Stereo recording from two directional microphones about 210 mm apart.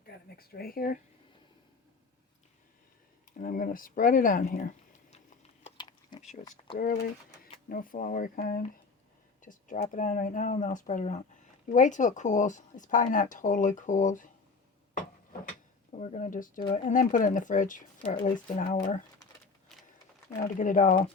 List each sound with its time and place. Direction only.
0.3 s speech: 45° left (ahead or behind)
3.3 s speech: 40° left (ahead or behind)
5.1 s a sound: 30° left (ahead or behind)
6.7 s speech: 45° left (ahead or behind)
15.9 s speech: 35° left (ahead or behind)
20.4 s speech: 40° left (ahead or behind)